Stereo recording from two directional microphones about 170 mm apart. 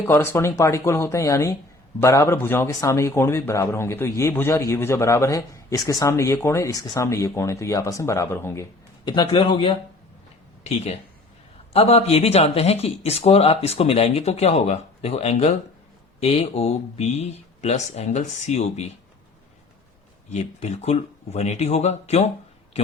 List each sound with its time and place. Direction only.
0.0 s speech: 15° left (ahead or behind)
9.0 s a man's voice: 30° left (ahead or behind)
20.3 s speech: 40° left (ahead or behind)